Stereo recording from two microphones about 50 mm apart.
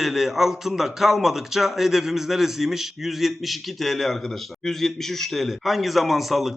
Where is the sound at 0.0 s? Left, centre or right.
Centre.